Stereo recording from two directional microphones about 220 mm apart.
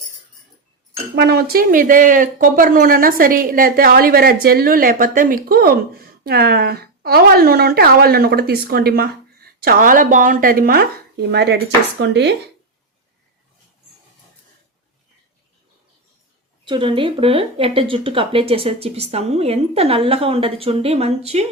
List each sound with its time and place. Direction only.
1.1 s speech: 50° right (ahead or behind)
16.6 s speech: 20° right (ahead or behind)